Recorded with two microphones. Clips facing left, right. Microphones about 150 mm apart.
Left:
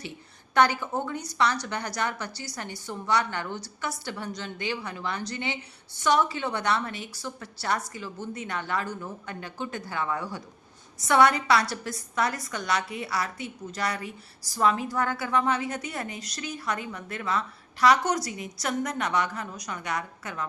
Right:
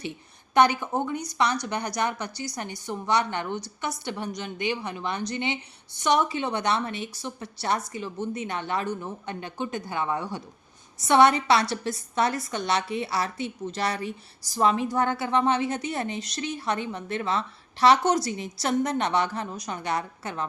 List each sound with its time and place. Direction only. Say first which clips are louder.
0.5 s a woman's voice: right 2 dB; 20° right (ahead or behind)